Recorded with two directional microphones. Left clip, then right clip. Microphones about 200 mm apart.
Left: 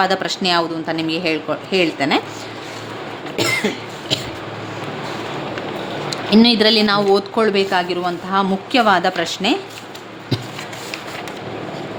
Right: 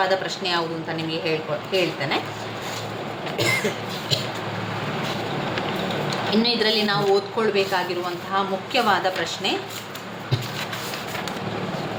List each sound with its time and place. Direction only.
0.0 s speech: 60° left (ahead or behind)
3.3 s a sound: 55° left (ahead or behind)
6.1 s speech: 60° left (ahead or behind)